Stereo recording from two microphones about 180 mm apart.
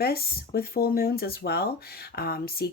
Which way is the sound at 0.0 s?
60° left (ahead or behind).